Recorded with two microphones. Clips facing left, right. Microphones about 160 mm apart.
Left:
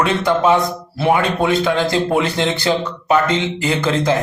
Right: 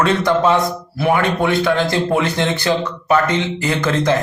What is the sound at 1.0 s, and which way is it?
Speech, 20° left (ahead or behind).